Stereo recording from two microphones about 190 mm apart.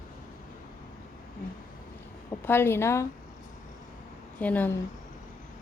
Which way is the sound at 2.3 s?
10° left (ahead or behind).